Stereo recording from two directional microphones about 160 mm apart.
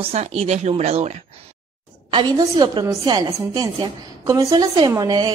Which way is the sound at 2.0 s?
30° right (ahead or behind).